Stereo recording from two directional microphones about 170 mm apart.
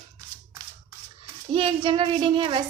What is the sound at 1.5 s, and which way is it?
A woman's voice, 30° right (ahead or behind).